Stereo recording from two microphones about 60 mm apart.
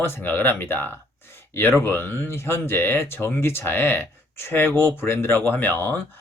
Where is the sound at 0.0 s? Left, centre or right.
Left.